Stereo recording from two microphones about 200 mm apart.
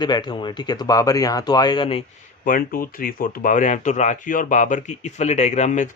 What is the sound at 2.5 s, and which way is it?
Speech, 45° left (ahead or behind).